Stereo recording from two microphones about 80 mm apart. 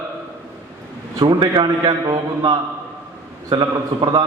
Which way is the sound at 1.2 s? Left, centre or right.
Right.